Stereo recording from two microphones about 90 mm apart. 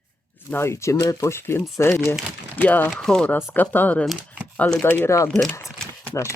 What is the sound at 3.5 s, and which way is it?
Speech, 20° left (ahead or behind).